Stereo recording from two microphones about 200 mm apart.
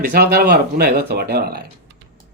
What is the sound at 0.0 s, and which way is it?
A man's voice, 50° right (ahead or behind).